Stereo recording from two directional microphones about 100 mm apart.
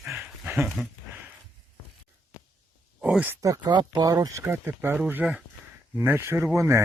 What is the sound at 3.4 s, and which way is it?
Speech, 35° right (ahead or behind).